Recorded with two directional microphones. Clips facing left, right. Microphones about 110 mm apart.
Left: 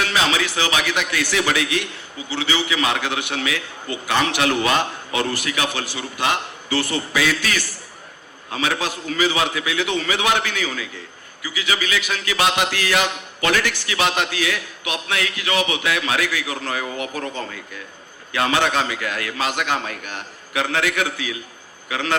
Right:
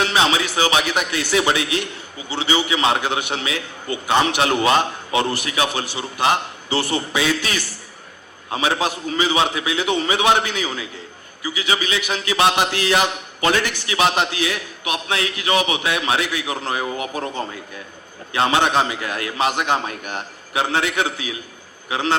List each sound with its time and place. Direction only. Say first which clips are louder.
0.0 s a man's voice: right 2 dB; 25° right (ahead or behind)
18.3 s a man's voice: right 2 dB; 25° right (ahead or behind)